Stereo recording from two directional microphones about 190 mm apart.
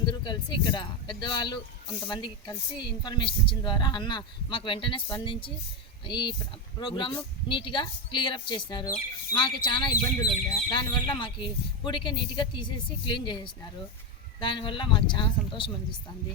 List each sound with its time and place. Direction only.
0.0 s speech: 25° left (ahead or behind)